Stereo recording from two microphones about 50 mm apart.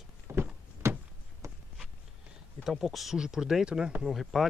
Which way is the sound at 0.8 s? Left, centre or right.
Right.